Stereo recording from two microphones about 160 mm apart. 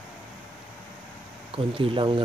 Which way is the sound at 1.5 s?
35° right (ahead or behind).